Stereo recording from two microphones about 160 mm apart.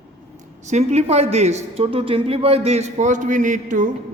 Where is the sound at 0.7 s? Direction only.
45° right (ahead or behind).